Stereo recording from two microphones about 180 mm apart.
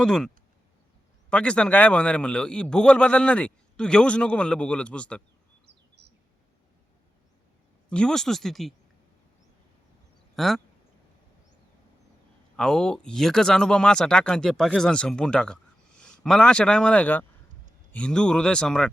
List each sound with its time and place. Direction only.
0.0 s speech: 5° left (ahead or behind)
1.3 s a man's voice: 5° left (ahead or behind)
5.6 s a sound: 70° right (ahead or behind)
7.9 s speech: 5° left (ahead or behind)
10.3 s speech: centre (ahead or behind)
12.5 s a man's voice: 5° left (ahead or behind)